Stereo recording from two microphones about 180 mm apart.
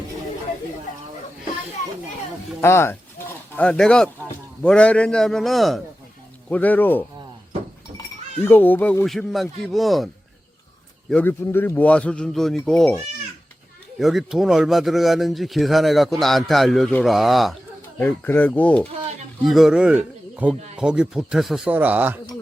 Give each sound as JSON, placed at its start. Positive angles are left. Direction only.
{"t": 2.6, "sound": "a man's voice", "side_deg": 15}
{"t": 8.4, "sound": "a man's voice", "side_deg": 10}
{"t": 11.1, "sound": "a man's voice", "side_deg": 10}
{"t": 14.0, "sound": "a man's voice", "side_deg": 0}
{"t": 18.0, "sound": "a man's voice", "side_deg": 10}